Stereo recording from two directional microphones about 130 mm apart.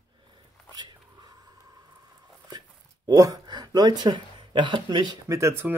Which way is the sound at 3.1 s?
30° right (ahead or behind).